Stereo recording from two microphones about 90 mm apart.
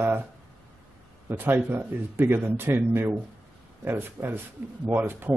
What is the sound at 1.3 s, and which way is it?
Speech, 25° right (ahead or behind).